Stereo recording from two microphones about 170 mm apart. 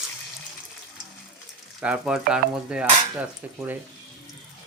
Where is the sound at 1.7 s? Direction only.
5° right (ahead or behind).